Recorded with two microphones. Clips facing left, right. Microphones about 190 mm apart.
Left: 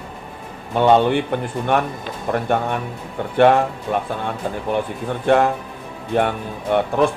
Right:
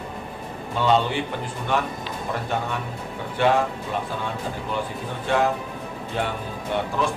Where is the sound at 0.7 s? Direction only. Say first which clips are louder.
Left 7 dB; 55° left (ahead or behind).